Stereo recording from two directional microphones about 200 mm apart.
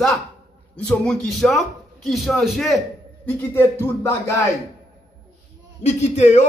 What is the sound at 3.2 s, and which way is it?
A man's voice, 10° left (ahead or behind).